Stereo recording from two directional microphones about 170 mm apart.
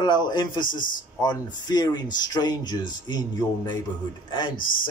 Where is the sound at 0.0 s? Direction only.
25° left (ahead or behind).